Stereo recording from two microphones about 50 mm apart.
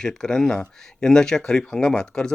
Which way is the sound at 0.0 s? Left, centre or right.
Centre.